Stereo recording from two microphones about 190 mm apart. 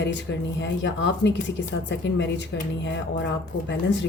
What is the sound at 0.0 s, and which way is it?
A woman's voice, 70° left (ahead or behind).